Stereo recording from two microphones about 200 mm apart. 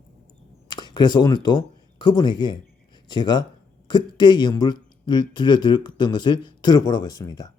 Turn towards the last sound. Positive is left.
turn(degrees=20)  # may be behind; listen again after turning